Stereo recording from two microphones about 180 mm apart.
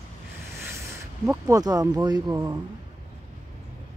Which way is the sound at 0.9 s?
15° right (ahead or behind).